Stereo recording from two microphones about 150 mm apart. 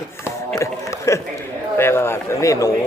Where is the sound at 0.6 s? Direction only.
20° left (ahead or behind).